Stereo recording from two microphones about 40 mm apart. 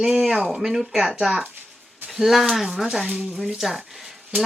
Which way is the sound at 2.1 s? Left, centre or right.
Centre.